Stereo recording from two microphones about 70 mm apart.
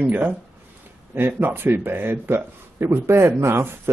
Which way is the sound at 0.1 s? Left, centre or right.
Right.